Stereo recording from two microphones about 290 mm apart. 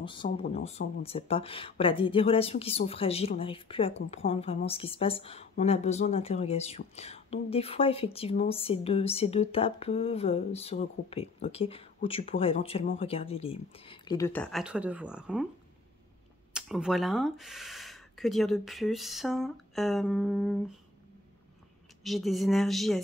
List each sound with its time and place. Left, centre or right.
0.0 s speech: centre
16.5 s speech: centre
22.0 s speech: centre